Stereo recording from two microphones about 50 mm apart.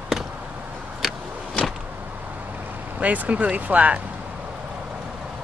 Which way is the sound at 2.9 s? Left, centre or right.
Right.